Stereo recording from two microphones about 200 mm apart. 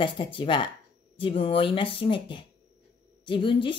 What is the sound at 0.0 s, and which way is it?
Speech, 25° left (ahead or behind).